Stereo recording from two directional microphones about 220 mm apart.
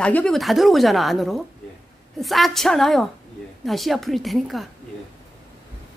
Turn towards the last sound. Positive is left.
turn(degrees=0)  # may be behind; listen again after turning